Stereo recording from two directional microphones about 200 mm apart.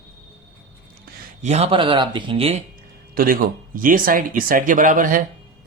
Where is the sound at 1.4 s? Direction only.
30° right (ahead or behind).